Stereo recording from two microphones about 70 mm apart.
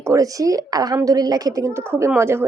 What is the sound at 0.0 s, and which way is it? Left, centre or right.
Speech, right.